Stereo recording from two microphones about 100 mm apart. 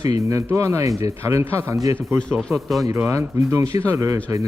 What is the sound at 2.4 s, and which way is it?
Speech, centre (ahead or behind).